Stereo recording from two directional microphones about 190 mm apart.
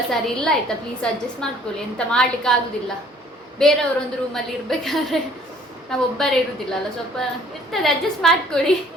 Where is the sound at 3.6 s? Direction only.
5° left (ahead or behind).